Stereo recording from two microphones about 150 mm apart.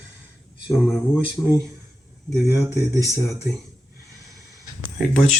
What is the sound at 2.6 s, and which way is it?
Speech, 25° right (ahead or behind).